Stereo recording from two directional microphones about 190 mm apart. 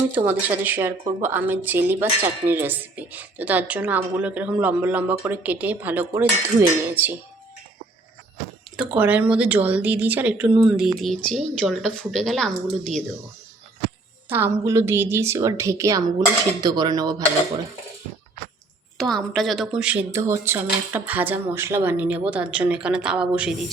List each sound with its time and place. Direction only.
0.1 s speech: 10° right (ahead or behind)
8.7 s a woman's voice: 5° right (ahead or behind)
14.3 s speech: 10° right (ahead or behind)
16.6 s dishes: 20° right (ahead or behind)
18.9 s a woman's voice: centre (ahead or behind)